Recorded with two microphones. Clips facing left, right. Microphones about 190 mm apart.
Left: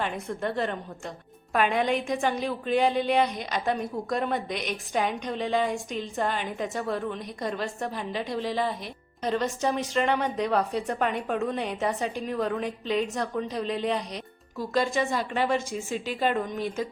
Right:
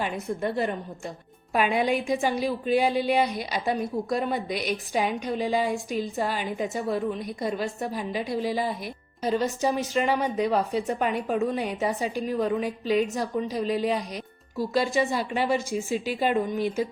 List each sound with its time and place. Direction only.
0.0 s a woman's voice: 10° right (ahead or behind)